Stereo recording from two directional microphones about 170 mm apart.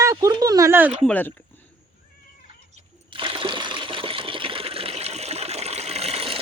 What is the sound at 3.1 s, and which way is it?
Water, 30° right (ahead or behind).